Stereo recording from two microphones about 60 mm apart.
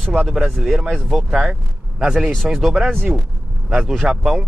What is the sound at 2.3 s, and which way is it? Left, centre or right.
Speech, centre.